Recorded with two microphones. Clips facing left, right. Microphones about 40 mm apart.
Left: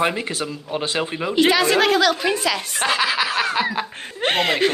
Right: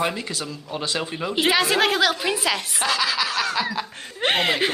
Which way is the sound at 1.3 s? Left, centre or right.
Centre.